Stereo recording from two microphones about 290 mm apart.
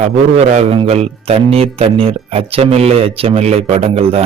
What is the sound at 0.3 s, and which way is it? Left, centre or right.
A man's voice, right.